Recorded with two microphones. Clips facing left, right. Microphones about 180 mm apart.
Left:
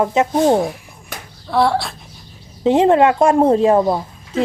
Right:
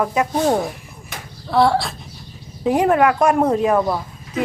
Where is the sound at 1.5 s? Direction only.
Centre (ahead or behind).